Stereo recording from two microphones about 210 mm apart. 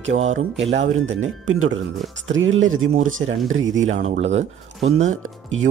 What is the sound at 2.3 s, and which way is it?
Speech, 65° right (ahead or behind).